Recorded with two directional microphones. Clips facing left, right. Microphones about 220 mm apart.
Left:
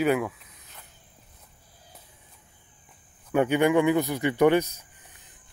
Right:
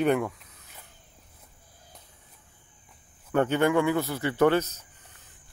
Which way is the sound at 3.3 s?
10° left (ahead or behind).